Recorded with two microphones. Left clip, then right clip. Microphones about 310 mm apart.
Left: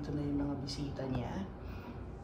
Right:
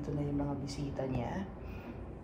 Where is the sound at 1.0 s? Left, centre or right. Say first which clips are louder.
Right 4 dB; centre.